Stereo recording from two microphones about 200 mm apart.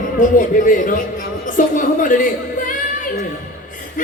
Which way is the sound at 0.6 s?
40° left (ahead or behind).